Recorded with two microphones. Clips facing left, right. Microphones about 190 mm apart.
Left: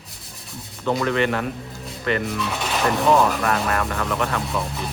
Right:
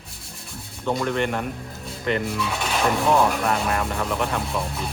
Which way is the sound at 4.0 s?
15° right (ahead or behind).